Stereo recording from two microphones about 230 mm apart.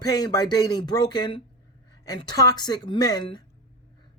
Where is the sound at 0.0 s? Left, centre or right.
Centre.